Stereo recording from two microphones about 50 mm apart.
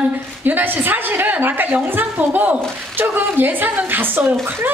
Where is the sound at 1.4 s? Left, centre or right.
Right.